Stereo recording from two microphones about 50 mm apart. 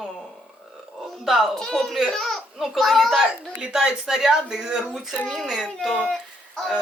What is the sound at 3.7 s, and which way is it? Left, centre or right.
Speech, centre.